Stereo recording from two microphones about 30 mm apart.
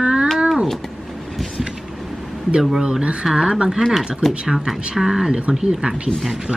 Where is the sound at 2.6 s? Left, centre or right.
Centre.